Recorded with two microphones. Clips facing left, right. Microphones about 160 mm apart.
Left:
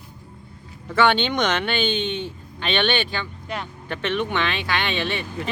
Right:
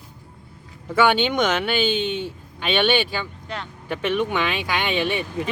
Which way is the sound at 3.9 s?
10° right (ahead or behind).